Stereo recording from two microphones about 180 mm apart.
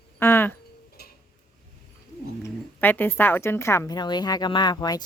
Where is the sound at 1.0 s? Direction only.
60° left (ahead or behind).